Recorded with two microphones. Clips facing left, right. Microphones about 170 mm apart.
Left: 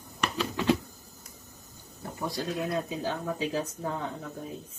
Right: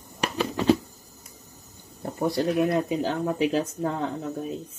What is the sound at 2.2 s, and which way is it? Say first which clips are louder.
Speech: right 9 dB; 70° right (ahead or behind).